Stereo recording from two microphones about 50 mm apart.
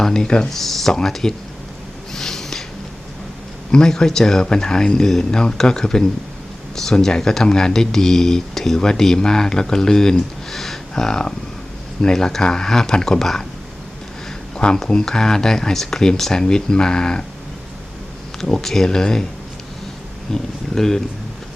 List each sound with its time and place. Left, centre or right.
0.0 s speech: centre
2.1 s a sound: centre
3.7 s speech: centre
14.5 s a sound: centre
14.8 s speech: centre
18.3 s speech: centre
20.3 s speech: centre